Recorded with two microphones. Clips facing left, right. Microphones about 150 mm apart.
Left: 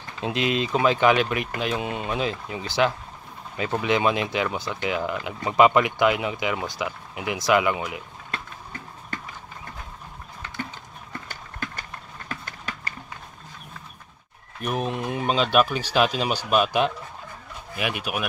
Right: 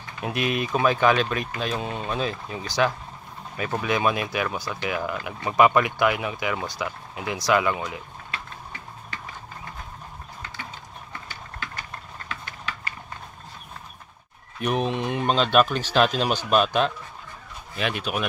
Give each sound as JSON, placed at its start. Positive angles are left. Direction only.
{"t": 0.2, "sound": "speech", "side_deg": 20}
{"t": 12.3, "sound": "a sound", "side_deg": 40}
{"t": 14.6, "sound": "speech", "side_deg": 0}